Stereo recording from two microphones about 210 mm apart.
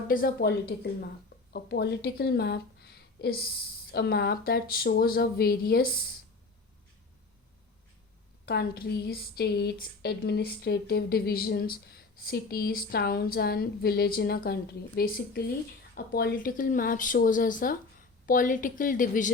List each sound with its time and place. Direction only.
0.1 s speech: 45° left (ahead or behind)
1.5 s a woman's voice: 50° left (ahead or behind)
8.4 s speech: 50° left (ahead or behind)